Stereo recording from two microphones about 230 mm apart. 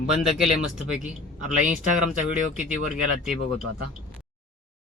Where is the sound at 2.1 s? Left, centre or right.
Left.